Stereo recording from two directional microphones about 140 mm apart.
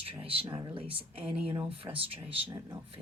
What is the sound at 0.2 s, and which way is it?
Speech, 40° right (ahead or behind).